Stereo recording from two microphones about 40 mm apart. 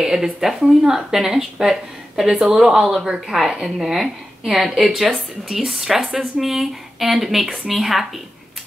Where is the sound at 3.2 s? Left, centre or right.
Centre.